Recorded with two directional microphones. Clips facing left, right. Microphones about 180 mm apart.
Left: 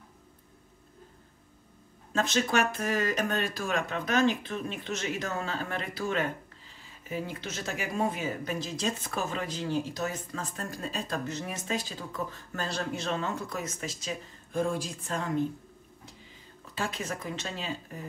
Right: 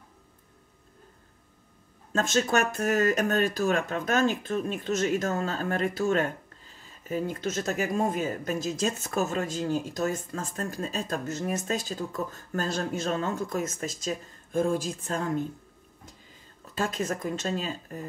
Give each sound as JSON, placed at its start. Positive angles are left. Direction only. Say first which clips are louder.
{"t": 2.2, "sound": "speech", "louder": "right 2 dB", "side_deg": -45}
{"t": 16.7, "sound": "speech", "louder": "right 5 dB", "side_deg": -45}